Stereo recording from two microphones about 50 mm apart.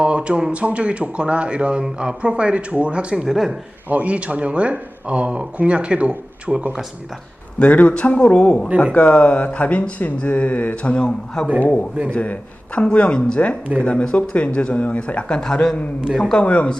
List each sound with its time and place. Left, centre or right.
0.0 s speech: right
3.2 s speech: centre
3.8 s speech: right
7.6 s speech: left
10.9 s speech: centre
11.6 s a man's voice: left; by 16.5 s centre